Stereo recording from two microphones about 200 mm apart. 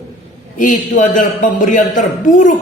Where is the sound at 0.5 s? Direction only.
40° left (ahead or behind).